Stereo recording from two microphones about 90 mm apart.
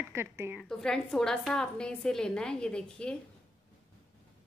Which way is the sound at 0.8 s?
5° left (ahead or behind).